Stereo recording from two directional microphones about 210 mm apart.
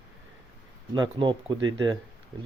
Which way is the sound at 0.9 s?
20° right (ahead or behind).